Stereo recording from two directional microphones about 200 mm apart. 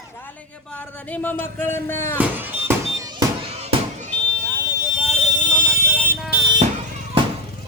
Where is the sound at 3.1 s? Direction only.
30° right (ahead or behind).